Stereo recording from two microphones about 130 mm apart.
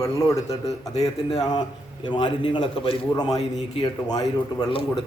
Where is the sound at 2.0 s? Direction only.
35° left (ahead or behind).